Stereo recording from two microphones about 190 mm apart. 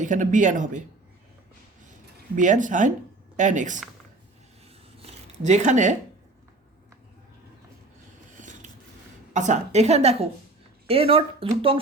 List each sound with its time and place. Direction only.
0.0 s a woman's voice: 40° right (ahead or behind)
2.3 s a woman's voice: 40° right (ahead or behind)
4.9 s a sound: 35° right (ahead or behind)
8.4 s scissors: 40° right (ahead or behind)
9.3 s a woman's voice: 40° right (ahead or behind)